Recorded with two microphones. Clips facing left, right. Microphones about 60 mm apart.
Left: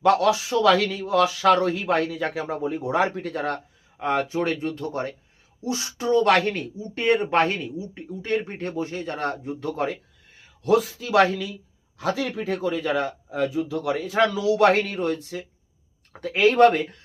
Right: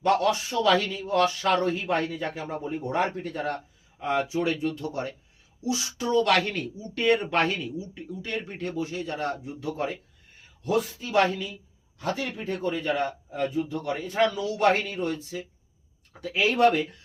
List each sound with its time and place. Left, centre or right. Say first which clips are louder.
0.0 s speech: left 4 dB; left
6.1 s a man's voice: left 4 dB; left
10.6 s a man's voice: left 6 dB; left